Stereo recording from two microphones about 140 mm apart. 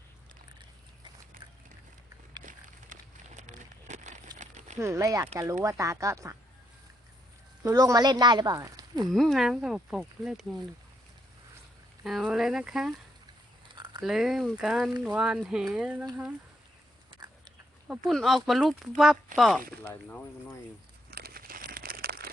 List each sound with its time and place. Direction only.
2.5 s a sound: 60° right (ahead or behind)
4.4 s crumpling: 55° right (ahead or behind)
4.8 s speech: 20° right (ahead or behind)
7.6 s speech: 20° right (ahead or behind)
9.0 s speech: centre (ahead or behind)
12.0 s speech: 5° right (ahead or behind)
13.7 s a sound: 30° right (ahead or behind)
14.0 s speech: 5° right (ahead or behind)
17.1 s a sound: 30° right (ahead or behind)
18.0 s speech: centre (ahead or behind)
19.8 s speech: 15° left (ahead or behind)
21.1 s crumpling: 90° right